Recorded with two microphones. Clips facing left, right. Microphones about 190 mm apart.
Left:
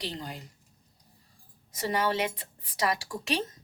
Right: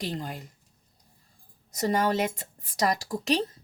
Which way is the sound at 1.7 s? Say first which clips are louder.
Right 3 dB; 45° right (ahead or behind).